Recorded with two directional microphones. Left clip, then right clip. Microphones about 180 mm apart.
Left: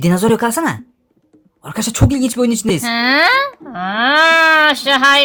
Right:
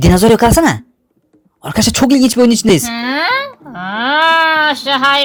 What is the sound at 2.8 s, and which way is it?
A child's voice, 20° left (ahead or behind).